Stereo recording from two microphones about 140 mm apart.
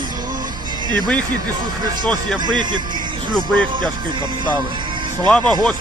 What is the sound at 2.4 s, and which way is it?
Speech, 35° right (ahead or behind).